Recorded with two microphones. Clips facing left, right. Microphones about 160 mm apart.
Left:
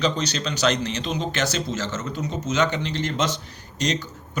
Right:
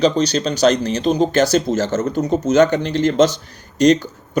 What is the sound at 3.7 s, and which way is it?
Speech, 55° right (ahead or behind).